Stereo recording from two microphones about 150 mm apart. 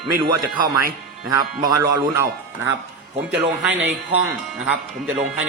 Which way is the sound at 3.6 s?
10° right (ahead or behind).